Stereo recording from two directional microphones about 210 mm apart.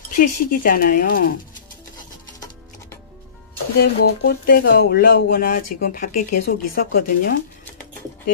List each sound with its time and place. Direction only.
0.1 s speech: 40° left (ahead or behind)
3.8 s speech: 50° left (ahead or behind)